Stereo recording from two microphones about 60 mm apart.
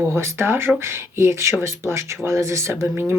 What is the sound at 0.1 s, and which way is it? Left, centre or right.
Speech, right.